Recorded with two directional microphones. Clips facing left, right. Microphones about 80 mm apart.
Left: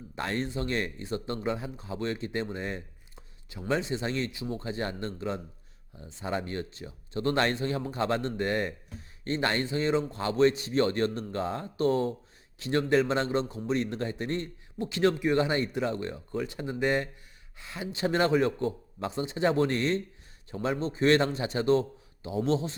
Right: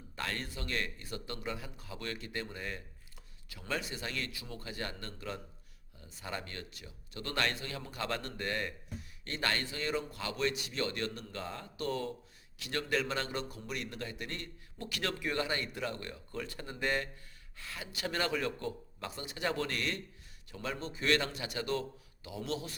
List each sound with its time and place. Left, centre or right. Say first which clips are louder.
0.2 s speech: left 8 dB; left